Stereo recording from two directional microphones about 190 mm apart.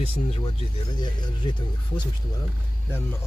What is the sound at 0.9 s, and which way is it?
Speech, 25° left (ahead or behind).